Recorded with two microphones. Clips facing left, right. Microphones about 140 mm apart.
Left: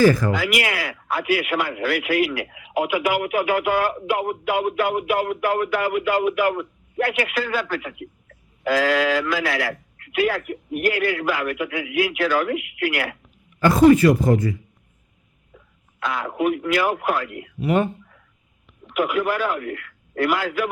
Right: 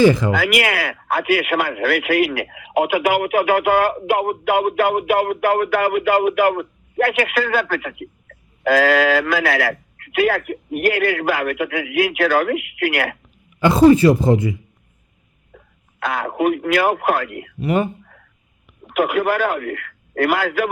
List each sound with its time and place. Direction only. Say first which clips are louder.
0.0 s speech: right 2 dB; 20° right (ahead or behind)
0.3 s speech: right 4 dB; 65° right (ahead or behind)
13.6 s speech: right 2 dB; 25° right (ahead or behind)
15.5 s speech: right 4 dB; 60° right (ahead or behind)
17.6 s speech: right 1 dB; centre (ahead or behind)
18.9 s speech: right 4 dB; 65° right (ahead or behind)